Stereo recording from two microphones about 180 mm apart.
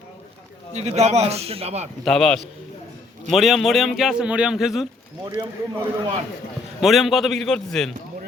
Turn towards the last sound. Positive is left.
turn(degrees=5)  # may be behind; listen again after turning